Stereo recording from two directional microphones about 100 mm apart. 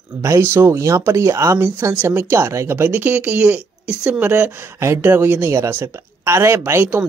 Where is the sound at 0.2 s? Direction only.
30° right (ahead or behind).